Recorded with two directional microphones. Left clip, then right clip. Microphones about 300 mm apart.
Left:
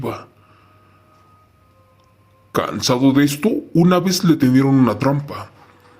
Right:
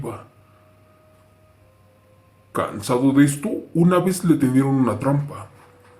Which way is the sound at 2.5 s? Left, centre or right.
Left.